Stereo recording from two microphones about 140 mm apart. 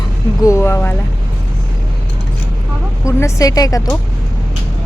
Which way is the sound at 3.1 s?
20° left (ahead or behind).